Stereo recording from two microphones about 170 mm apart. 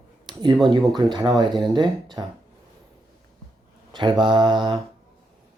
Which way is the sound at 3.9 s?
25° right (ahead or behind).